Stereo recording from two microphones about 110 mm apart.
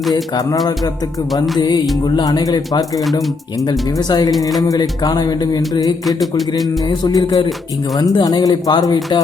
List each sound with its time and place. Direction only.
0.1 s music: 35° left (ahead or behind)
4.3 s speech: centre (ahead or behind)
4.7 s music: 35° left (ahead or behind)
6.1 s speech: centre (ahead or behind)
7.0 s music: 40° left (ahead or behind)